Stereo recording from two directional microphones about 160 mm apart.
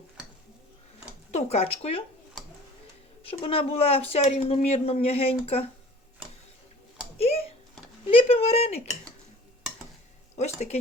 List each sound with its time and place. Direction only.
1.3 s speech: 45° left (ahead or behind)
3.2 s speech: 35° left (ahead or behind)
7.2 s a sound: 40° left (ahead or behind)
8.0 s speech: 35° left (ahead or behind)
10.3 s speech: 45° left (ahead or behind)